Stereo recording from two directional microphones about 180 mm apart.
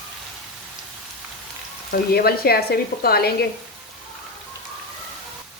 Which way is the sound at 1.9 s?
60° left (ahead or behind).